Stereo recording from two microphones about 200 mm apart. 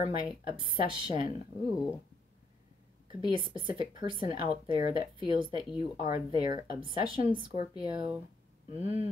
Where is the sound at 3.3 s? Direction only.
25° right (ahead or behind).